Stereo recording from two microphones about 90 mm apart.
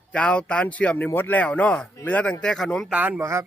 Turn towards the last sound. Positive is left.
turn(degrees=-30)  # may be behind; listen again after turning